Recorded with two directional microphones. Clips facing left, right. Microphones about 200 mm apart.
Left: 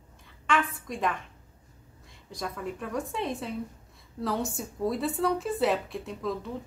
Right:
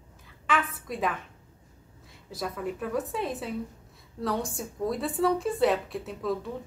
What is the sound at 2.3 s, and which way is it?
Speech, 5° right (ahead or behind).